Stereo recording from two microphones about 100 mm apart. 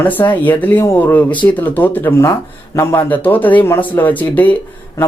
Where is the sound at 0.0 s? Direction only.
20° left (ahead or behind).